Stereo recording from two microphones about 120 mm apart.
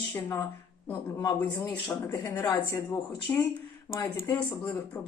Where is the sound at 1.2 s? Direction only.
25° left (ahead or behind).